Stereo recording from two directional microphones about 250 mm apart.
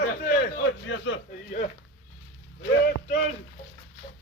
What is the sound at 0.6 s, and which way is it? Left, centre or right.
Speech, left.